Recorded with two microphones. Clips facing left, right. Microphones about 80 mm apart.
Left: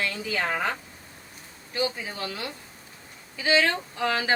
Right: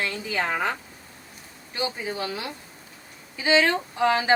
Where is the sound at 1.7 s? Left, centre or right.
Right.